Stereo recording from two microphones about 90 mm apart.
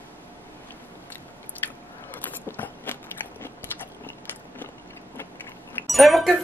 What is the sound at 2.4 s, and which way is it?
Biting, 20° left (ahead or behind).